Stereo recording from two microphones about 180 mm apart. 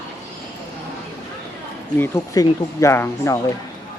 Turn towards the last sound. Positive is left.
turn(degrees=15)  # may be behind; listen again after turning